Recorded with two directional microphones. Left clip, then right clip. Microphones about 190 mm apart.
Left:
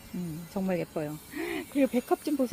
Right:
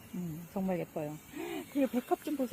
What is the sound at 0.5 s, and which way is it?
Speech, 5° left (ahead or behind).